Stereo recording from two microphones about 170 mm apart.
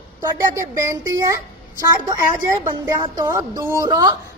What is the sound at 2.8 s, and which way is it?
A woman's voice, 15° right (ahead or behind).